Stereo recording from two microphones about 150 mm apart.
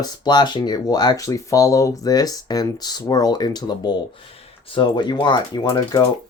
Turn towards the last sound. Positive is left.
turn(degrees=30)  # may be behind; listen again after turning